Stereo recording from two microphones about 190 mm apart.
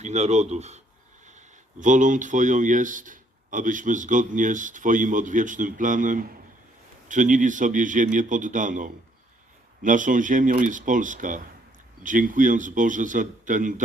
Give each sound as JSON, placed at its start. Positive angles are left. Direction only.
{"t": 0.0, "sound": "speech", "side_deg": -35}